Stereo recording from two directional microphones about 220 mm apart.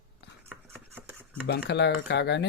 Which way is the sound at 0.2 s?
50° left (ahead or behind).